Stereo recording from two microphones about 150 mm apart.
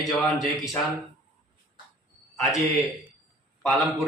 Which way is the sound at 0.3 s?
25° left (ahead or behind).